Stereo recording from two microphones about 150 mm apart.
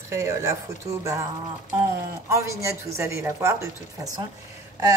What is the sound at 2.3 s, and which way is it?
A woman's voice, 20° right (ahead or behind).